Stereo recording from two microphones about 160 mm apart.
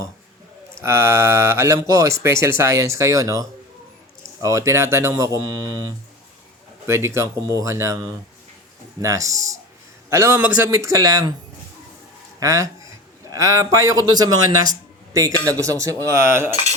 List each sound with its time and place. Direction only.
0.8 s speech: 15° right (ahead or behind)
6.8 s speech: 15° right (ahead or behind)
12.4 s speech: 20° right (ahead or behind)